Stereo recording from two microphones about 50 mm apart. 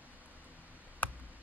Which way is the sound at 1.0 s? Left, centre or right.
Left.